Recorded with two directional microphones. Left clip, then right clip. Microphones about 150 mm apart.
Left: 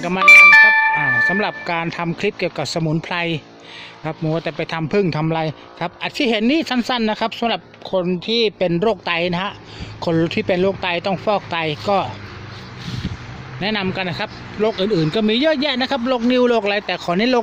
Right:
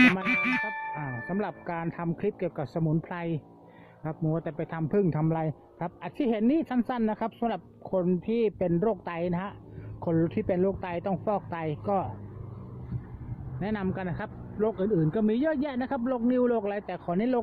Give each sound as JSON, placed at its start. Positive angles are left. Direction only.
{"t": 0.9, "sound": "a man's voice", "side_deg": 20}
{"t": 7.9, "sound": "speech", "side_deg": 0}
{"t": 8.5, "sound": "a man's voice", "side_deg": 15}
{"t": 13.6, "sound": "a man's voice", "side_deg": 15}